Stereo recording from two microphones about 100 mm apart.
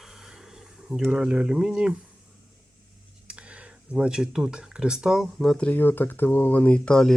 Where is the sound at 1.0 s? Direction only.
10° right (ahead or behind).